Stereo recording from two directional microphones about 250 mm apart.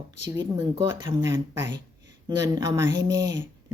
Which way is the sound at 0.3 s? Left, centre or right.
Centre.